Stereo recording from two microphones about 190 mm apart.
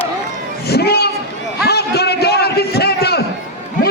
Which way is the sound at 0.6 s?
55° left (ahead or behind).